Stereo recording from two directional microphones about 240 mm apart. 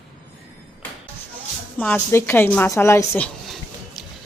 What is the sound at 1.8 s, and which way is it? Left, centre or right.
A woman's voice, centre.